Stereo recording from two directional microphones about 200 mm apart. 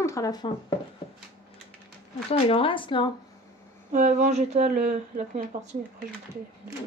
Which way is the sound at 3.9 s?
40° right (ahead or behind).